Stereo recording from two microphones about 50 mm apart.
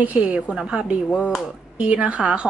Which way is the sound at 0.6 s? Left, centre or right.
Centre.